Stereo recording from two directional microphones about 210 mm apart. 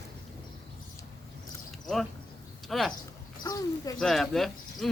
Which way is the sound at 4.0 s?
Centre (ahead or behind).